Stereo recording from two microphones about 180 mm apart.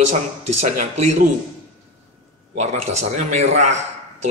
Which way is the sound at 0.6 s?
40° right (ahead or behind).